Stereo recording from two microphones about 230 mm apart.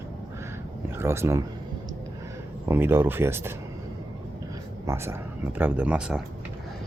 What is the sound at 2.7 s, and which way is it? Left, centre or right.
Speech, centre.